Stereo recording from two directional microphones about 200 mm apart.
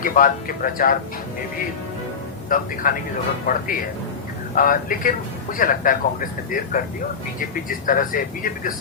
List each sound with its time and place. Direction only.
0.0 s speech: 45° left (ahead or behind)
2.5 s speech: 45° left (ahead or behind)